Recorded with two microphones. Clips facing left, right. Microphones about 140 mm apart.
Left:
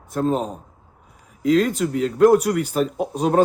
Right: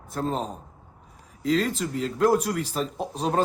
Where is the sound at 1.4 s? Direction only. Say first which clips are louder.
Left 6 dB; 55° left (ahead or behind).